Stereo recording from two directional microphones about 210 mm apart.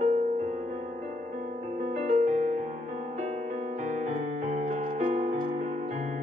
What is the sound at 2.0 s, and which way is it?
Music, 35° right (ahead or behind).